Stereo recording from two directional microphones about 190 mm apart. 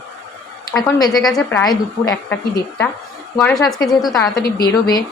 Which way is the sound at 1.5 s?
15° left (ahead or behind).